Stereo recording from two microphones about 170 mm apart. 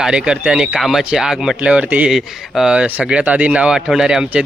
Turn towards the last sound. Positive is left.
turn(degrees=-5)  # may be behind; listen again after turning